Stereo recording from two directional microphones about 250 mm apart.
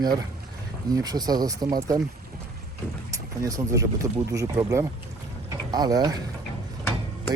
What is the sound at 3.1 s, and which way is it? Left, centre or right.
Speech, centre.